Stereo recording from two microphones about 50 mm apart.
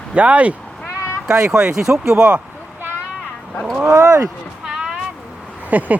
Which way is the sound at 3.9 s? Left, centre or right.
Right.